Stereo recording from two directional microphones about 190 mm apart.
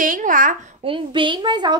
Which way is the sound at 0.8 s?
25° right (ahead or behind).